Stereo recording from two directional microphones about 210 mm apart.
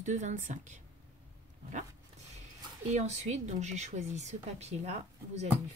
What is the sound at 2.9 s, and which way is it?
Speech, 35° right (ahead or behind).